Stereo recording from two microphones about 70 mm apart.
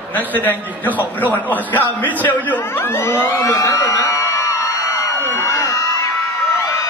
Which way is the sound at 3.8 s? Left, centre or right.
Left.